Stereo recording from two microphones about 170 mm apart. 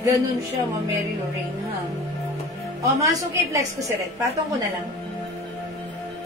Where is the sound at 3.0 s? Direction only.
20° right (ahead or behind).